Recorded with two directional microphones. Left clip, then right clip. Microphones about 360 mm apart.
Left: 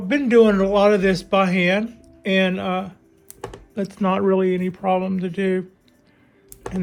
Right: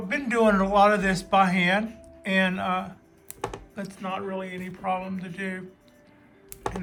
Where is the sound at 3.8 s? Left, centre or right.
Centre.